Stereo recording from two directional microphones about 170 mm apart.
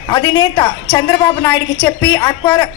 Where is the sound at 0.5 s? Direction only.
35° left (ahead or behind).